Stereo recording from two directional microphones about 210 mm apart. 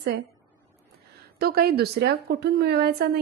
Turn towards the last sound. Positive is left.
turn(degrees=-50)  # may be behind; listen again after turning